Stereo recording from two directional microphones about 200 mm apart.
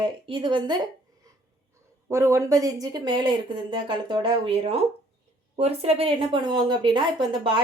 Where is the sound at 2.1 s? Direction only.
15° right (ahead or behind).